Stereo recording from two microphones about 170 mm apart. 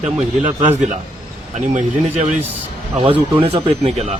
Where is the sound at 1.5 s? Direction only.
45° right (ahead or behind).